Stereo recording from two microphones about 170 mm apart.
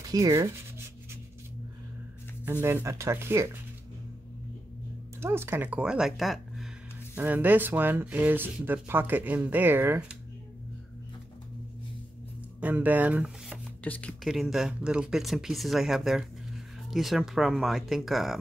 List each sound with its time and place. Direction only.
0.1 s sanding: 20° right (ahead or behind)
2.4 s speech: 15° right (ahead or behind)
5.2 s speech: 15° right (ahead or behind)
7.2 s speech: 10° right (ahead or behind)
12.5 s speech: 10° right (ahead or behind)
13.8 s speech: 10° left (ahead or behind)